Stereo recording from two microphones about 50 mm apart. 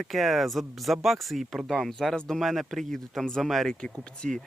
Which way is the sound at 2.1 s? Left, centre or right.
Centre.